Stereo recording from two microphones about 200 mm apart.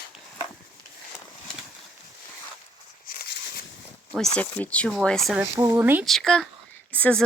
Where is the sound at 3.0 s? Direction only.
45° left (ahead or behind).